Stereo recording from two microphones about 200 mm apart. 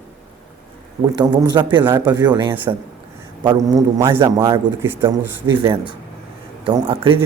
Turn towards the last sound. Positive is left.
turn(degrees=-25)  # may be behind; listen again after turning